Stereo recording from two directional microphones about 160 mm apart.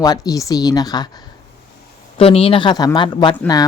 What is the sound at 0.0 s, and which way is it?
Speech, 25° left (ahead or behind).